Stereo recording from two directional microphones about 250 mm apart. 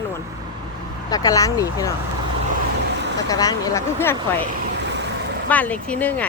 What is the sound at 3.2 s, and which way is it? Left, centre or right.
Speech, centre.